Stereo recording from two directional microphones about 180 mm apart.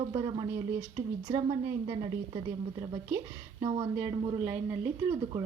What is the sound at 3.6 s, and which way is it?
Speech, 25° right (ahead or behind).